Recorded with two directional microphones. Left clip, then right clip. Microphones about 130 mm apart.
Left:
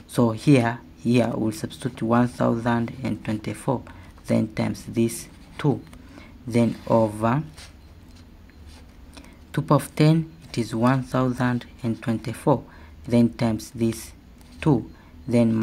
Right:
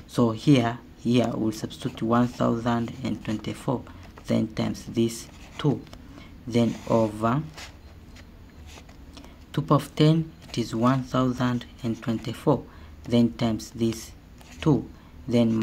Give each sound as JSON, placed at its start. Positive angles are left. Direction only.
{"t": 0.1, "sound": "speech", "side_deg": 25}
{"t": 9.1, "sound": "speech", "side_deg": 25}